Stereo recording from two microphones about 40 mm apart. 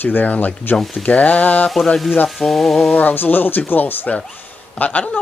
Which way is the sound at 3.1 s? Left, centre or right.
Left.